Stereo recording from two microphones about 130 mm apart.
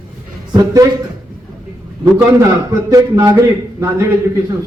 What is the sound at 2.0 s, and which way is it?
A man's voice, 25° right (ahead or behind).